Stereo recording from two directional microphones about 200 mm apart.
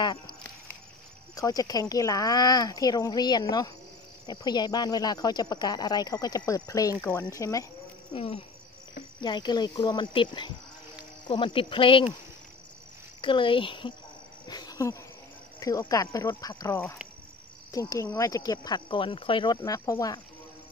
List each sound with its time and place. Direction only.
1.3 s speech: 15° left (ahead or behind)
8.1 s speech: 30° left (ahead or behind)
13.2 s speech: 25° left (ahead or behind)